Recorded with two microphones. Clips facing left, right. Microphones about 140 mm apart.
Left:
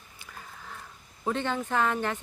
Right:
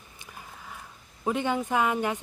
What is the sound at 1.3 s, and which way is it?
Speech, 10° right (ahead or behind).